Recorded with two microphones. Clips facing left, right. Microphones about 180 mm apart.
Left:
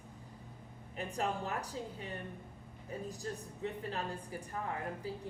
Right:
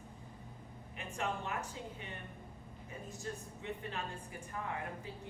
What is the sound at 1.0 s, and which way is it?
Speech, 35° left (ahead or behind).